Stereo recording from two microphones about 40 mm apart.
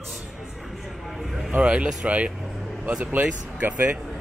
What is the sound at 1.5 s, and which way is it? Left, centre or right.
Speech, right.